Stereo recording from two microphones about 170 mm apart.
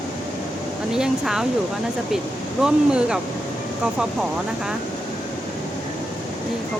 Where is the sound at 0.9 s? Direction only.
5° right (ahead or behind).